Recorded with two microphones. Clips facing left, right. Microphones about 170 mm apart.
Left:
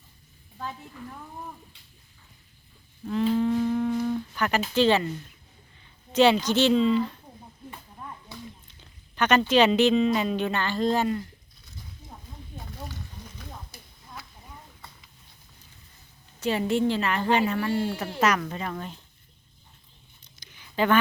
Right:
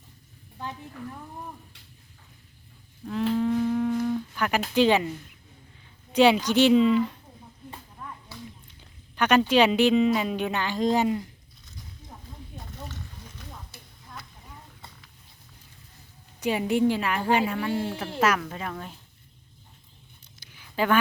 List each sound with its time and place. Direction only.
3.1 s speech: centre (ahead or behind)
6.1 s speech: 10° right (ahead or behind)
8.0 s a sound: 20° left (ahead or behind)
9.1 s speech: 10° right (ahead or behind)
16.4 s a woman's voice: 15° right (ahead or behind)
20.4 s a sound: 5° right (ahead or behind)